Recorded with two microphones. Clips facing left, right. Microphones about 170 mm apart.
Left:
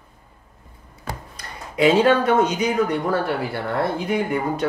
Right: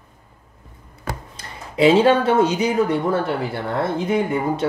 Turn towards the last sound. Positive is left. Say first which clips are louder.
# right 2 dB
turn(degrees=-25)  # may be behind; listen again after turning